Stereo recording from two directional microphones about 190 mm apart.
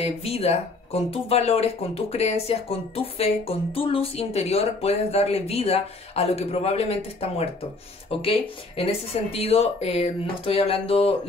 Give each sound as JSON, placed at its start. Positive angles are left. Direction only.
{"t": 0.0, "sound": "speech", "side_deg": 30}